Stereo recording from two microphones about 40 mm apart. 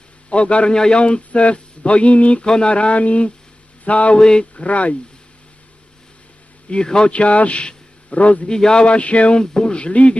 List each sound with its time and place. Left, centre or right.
0.3 s a man's voice: left
2.4 s a man's voice: left
4.2 s speech: left
6.7 s a man's voice: left
8.4 s speech: centre